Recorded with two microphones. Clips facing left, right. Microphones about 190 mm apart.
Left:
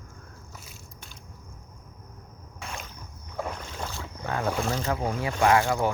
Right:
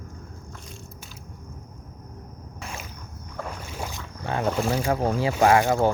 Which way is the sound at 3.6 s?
10° right (ahead or behind).